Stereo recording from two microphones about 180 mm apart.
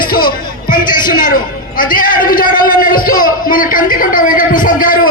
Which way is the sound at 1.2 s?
50° left (ahead or behind).